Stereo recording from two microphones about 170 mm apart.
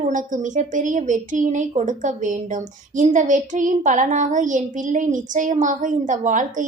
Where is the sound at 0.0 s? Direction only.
50° right (ahead or behind).